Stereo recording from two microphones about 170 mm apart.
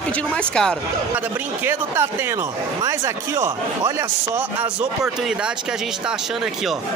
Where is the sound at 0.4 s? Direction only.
5° left (ahead or behind).